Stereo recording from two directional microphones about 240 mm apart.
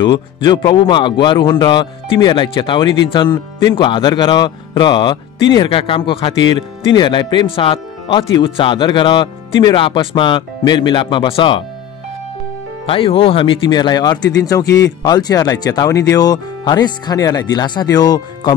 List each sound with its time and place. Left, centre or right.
0.0 s speech: centre
12.8 s speech: left